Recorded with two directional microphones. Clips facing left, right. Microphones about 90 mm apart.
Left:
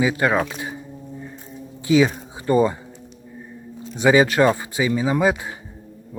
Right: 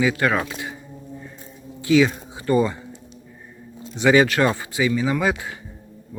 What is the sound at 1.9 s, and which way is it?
Speech, 25° left (ahead or behind).